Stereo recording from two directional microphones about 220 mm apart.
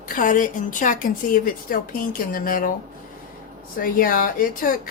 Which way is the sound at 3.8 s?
40° left (ahead or behind).